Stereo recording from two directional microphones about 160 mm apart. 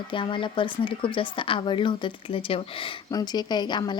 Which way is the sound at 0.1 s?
30° left (ahead or behind).